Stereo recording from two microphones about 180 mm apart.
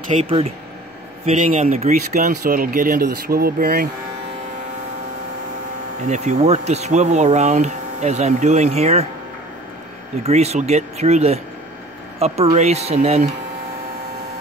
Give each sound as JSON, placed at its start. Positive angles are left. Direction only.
{"t": 0.1, "sound": "speech", "side_deg": -35}
{"t": 6.0, "sound": "speech", "side_deg": -40}
{"t": 10.2, "sound": "speech", "side_deg": -35}
{"t": 12.5, "sound": "speech", "side_deg": -35}